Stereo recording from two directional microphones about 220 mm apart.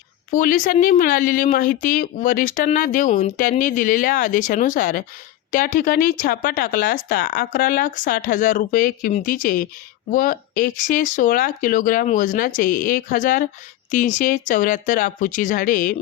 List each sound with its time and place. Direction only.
0.3 s speech: 40° left (ahead or behind)